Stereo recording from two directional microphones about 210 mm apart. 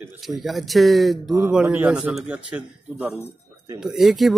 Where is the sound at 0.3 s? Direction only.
Centre (ahead or behind).